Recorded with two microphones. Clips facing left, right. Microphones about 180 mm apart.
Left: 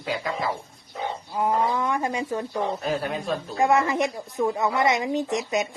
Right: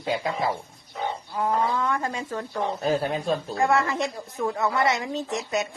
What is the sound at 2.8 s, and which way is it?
Speech, 30° right (ahead or behind).